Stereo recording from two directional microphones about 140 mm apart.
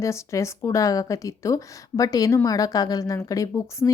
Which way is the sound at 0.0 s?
20° left (ahead or behind).